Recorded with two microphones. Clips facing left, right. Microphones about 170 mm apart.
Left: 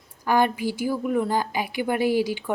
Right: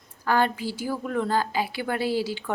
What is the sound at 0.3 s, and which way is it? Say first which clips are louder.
A woman's voice: left 2 dB; 15° left (ahead or behind).